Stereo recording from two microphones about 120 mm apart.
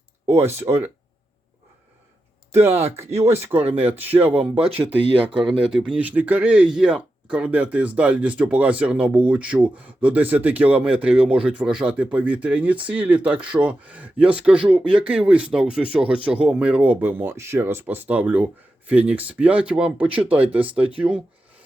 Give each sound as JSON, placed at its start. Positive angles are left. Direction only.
{"t": 0.4, "sound": "speech", "side_deg": -20}
{"t": 2.6, "sound": "speech", "side_deg": -65}
{"t": 3.2, "sound": "speech", "side_deg": -20}
{"t": 5.0, "sound": "speech", "side_deg": -50}
{"t": 5.4, "sound": "speech", "side_deg": -10}
{"t": 11.2, "sound": "speech", "side_deg": -50}
{"t": 11.4, "sound": "speech", "side_deg": -10}
{"t": 14.5, "sound": "speech", "side_deg": -50}
{"t": 15.1, "sound": "speech", "side_deg": -10}